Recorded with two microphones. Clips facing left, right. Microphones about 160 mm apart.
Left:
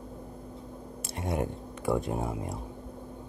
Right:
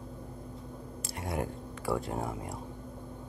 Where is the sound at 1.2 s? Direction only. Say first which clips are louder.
Left 4 dB; 20° left (ahead or behind).